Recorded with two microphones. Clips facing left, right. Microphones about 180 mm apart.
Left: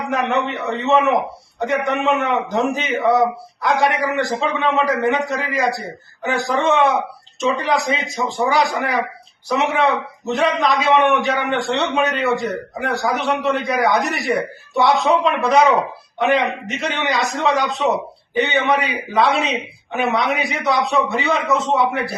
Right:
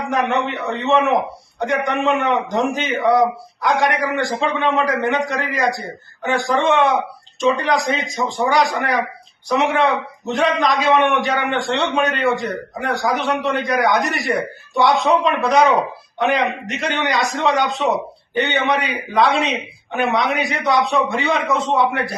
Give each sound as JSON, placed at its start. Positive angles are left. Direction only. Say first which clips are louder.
{"t": 0.1, "sound": "a man's voice", "louder": "even", "side_deg": 0}